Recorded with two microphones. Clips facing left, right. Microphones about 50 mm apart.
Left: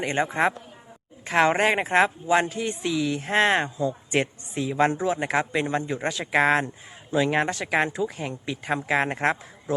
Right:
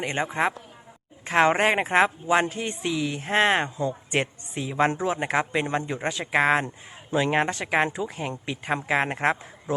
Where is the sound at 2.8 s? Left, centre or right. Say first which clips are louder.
Left 1 dB; centre.